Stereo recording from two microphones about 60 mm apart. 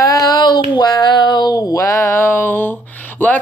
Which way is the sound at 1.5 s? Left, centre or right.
Left.